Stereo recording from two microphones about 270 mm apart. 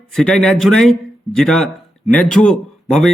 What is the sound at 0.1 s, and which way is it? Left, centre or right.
Speech, centre.